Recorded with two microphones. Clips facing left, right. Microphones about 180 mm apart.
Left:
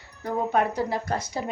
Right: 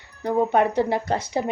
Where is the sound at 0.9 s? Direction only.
60° right (ahead or behind).